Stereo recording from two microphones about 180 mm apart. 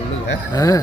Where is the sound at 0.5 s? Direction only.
20° left (ahead or behind).